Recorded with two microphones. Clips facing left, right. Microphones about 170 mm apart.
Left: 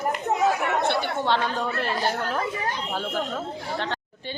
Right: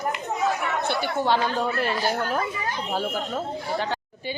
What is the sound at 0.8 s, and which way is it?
Speech, 5° right (ahead or behind).